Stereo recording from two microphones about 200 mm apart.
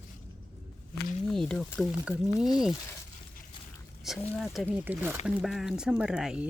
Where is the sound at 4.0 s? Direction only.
Centre (ahead or behind).